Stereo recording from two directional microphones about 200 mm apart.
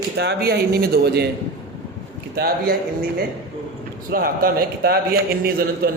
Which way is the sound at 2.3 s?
50° right (ahead or behind).